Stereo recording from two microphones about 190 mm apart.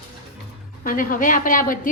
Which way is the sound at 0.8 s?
45° left (ahead or behind).